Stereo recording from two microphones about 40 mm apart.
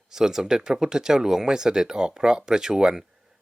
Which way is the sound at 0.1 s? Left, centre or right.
Centre.